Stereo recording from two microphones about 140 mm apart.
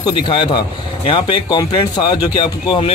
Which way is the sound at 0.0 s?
35° left (ahead or behind).